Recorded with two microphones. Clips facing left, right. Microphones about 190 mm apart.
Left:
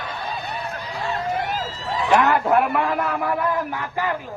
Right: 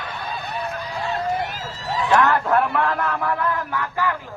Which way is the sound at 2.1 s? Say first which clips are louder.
Left 1 dB; 15° left (ahead or behind).